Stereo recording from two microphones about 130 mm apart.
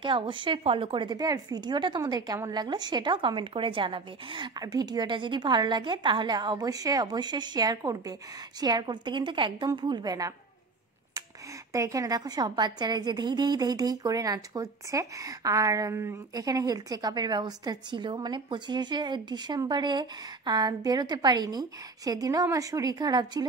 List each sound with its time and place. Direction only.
0.0 s a woman's voice: 40° right (ahead or behind)
11.7 s a woman's voice: 25° right (ahead or behind)